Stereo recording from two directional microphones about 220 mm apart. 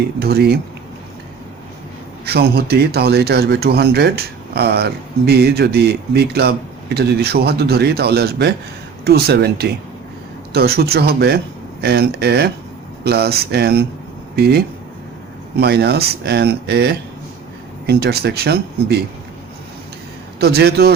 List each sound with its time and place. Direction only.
0.2 s a man's voice: 45° right (ahead or behind)
2.2 s a man's voice: 45° right (ahead or behind)
20.4 s a man's voice: 45° right (ahead or behind)